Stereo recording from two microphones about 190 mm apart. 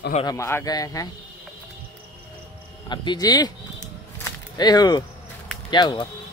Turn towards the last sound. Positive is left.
turn(degrees=25)  # may be behind; listen again after turning